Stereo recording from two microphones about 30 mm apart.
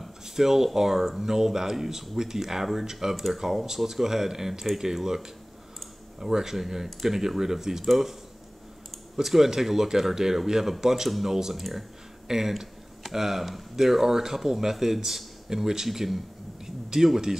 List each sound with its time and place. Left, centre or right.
0.4 s speech: centre
11.5 s speech: centre
12.3 s speech: centre
16.6 s a sound: centre